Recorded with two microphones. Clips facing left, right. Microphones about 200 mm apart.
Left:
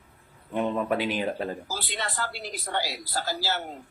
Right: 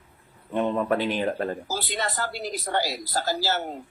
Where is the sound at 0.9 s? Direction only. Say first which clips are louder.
Right 2 dB; 10° left (ahead or behind).